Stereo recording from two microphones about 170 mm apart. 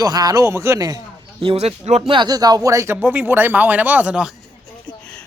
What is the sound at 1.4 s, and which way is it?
Speech, 35° right (ahead or behind).